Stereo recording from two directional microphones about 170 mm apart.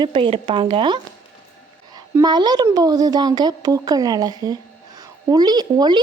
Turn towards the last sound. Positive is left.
turn(degrees=-25)  # may be behind; listen again after turning